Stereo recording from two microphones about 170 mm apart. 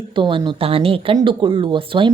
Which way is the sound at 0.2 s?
30° right (ahead or behind).